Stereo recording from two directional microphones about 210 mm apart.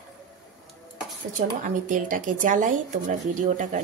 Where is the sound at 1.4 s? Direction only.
40° right (ahead or behind).